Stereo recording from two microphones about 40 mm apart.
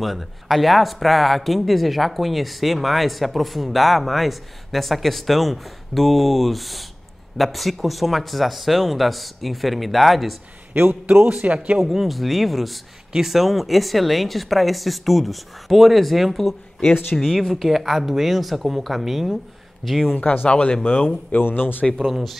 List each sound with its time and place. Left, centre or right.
0.0 s speech: centre
10.7 s a man's voice: right
11.4 s a man's voice: right
11.8 s speech: centre
20.2 s speech: left
20.4 s speech: left
21.4 s speech: left
22.1 s speech: centre